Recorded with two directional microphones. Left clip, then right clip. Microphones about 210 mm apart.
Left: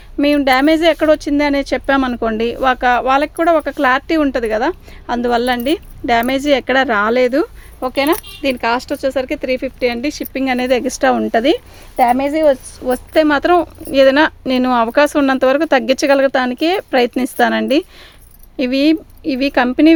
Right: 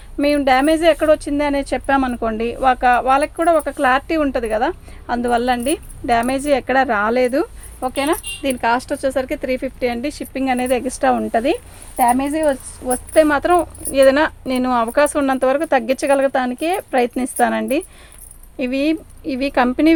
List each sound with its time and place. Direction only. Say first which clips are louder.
0.2 s speech: left 2 dB; 35° left (ahead or behind)